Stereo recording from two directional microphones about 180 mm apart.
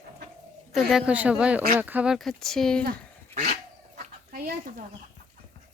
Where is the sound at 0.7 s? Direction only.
Centre (ahead or behind).